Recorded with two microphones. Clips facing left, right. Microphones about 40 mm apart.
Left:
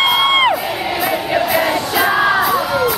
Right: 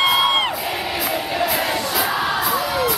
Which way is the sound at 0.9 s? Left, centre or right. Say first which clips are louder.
Left 6 dB; centre.